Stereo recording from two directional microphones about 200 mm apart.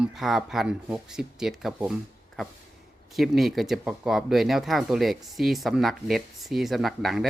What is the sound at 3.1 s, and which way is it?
Speech, centre (ahead or behind).